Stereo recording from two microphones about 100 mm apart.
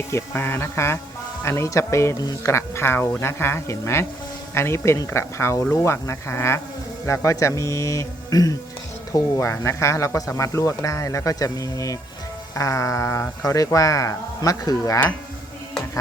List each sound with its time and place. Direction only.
0.1 s speech: 25° left (ahead or behind)